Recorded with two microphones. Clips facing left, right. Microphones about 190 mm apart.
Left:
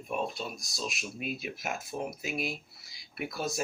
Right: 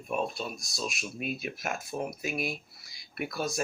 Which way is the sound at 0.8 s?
50° right (ahead or behind).